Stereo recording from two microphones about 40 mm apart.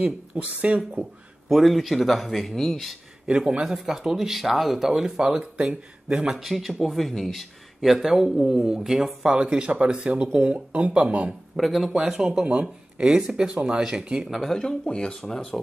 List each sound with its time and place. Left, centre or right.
0.0 s speech: right
1.5 s speech: centre
3.3 s speech: right
3.6 s speech: centre
6.2 s speech: centre
9.3 s speech: right
11.5 s speech: centre
12.0 s speech: centre
12.4 s speech: right; by 14.5 s centre
14.5 s speech: centre